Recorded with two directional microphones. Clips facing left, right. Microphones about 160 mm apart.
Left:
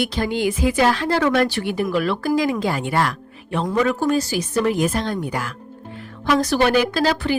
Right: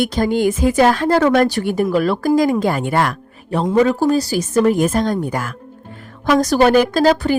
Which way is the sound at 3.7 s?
30° right (ahead or behind).